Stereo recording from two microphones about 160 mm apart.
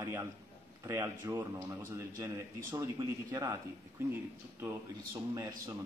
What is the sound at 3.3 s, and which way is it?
Speech, 20° right (ahead or behind).